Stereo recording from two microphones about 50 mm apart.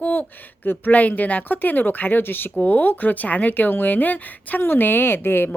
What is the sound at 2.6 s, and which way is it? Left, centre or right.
Speech, left.